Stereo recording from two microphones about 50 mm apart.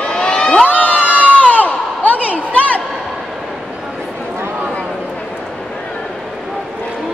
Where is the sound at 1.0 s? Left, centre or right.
Right.